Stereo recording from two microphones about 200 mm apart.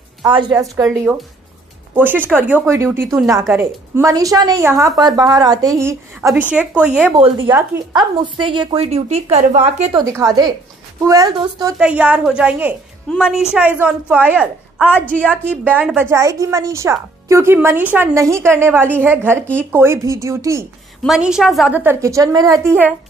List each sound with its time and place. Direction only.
0.3 s a woman's voice: 20° right (ahead or behind)
2.0 s a woman's voice: 10° right (ahead or behind); by 9.9 s 35° right (ahead or behind)
9.9 s a woman's voice: 15° right (ahead or behind)
11.8 s a woman's voice: 5° right (ahead or behind)
21.0 s a woman's voice: centre (ahead or behind)